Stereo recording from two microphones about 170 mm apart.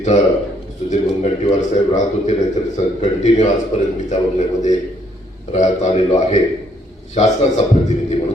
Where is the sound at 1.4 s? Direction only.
45° left (ahead or behind).